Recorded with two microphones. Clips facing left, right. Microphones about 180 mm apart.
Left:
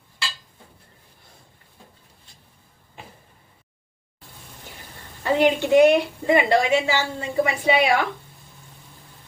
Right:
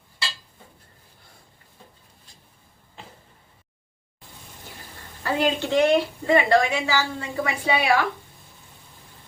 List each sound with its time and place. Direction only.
5.2 s a woman's voice: 15° left (ahead or behind)